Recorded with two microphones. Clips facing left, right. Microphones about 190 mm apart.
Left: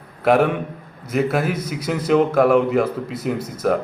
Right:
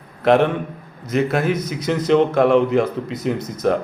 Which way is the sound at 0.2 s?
5° left (ahead or behind).